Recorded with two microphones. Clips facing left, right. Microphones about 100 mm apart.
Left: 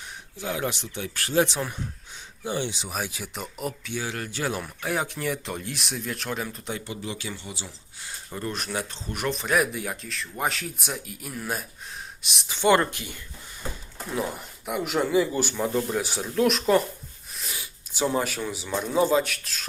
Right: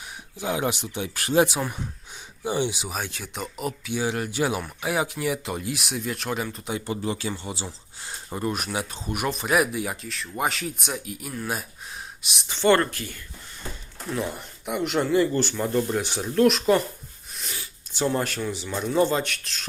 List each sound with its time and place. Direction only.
0.3 s speech: 20° right (ahead or behind)
2.9 s speech: 5° left (ahead or behind)
3.9 s speech: 15° right (ahead or behind)
6.8 s speech: 40° right (ahead or behind)
8.4 s speech: 10° right (ahead or behind)
12.5 s speech: 15° left (ahead or behind)
14.2 s speech: centre (ahead or behind)
17.3 s a sound: 5° left (ahead or behind)
17.6 s speech: 5° left (ahead or behind)